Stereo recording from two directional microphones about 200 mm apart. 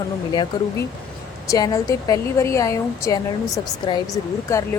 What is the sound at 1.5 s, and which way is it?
Speech, 20° left (ahead or behind).